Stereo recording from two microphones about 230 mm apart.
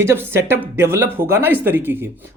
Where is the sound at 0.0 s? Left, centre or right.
Centre.